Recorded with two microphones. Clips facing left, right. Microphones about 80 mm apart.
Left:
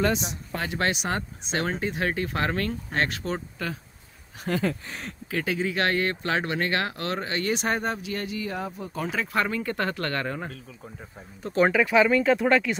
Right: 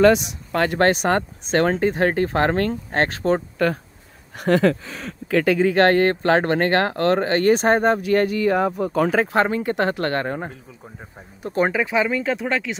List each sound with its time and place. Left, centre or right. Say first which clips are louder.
0.0 s speech: right 10 dB; right
0.7 s speech: right 8 dB; right
3.5 s speech: right 12 dB; right
4.4 s speech: right 10 dB; right
5.3 s speech: right 10 dB; right
9.3 s speech: right 7 dB; right
11.6 s speech: left 1 dB; centre
12.1 s speech: left 2 dB; centre